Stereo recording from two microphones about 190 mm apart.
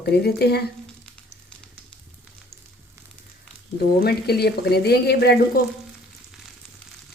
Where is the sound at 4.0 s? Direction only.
55° left (ahead or behind).